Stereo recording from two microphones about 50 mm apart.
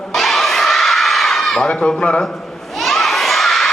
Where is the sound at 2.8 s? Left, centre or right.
Centre.